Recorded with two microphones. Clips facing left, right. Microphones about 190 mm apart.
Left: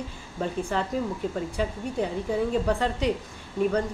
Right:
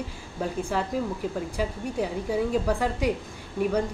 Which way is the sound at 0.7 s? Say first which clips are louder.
Right 1 dB; 5° right (ahead or behind).